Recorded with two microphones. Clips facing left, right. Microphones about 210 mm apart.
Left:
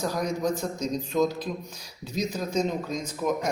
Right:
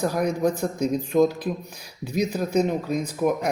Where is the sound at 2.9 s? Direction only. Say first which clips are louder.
Right 5 dB; 60° right (ahead or behind).